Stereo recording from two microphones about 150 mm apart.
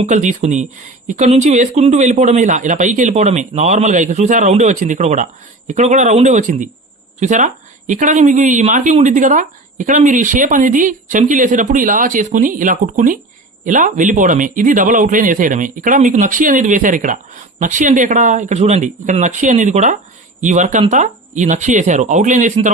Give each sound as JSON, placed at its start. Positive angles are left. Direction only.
{"t": 0.0, "sound": "a woman's voice", "side_deg": -50}